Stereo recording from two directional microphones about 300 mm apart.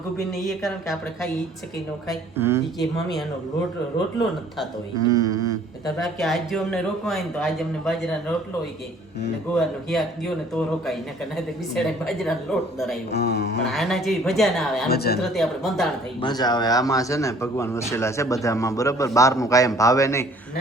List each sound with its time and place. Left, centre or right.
0.3 s a man's voice: centre
2.3 s a sound: centre
2.8 s a man's voice: centre
4.9 s a sound: centre
6.1 s a man's voice: centre
9.9 s a man's voice: centre
13.1 s speech: left
13.7 s a man's voice: centre
14.8 s speech: left
15.2 s a man's voice: centre
16.2 s speech: centre